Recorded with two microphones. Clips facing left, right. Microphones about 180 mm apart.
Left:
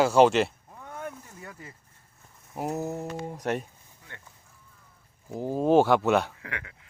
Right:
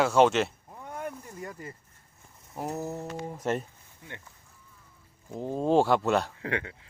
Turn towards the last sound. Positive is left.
turn(degrees=-30)  # may be behind; listen again after turning